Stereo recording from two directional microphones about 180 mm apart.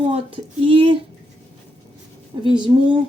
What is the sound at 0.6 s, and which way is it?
Speech, 30° right (ahead or behind).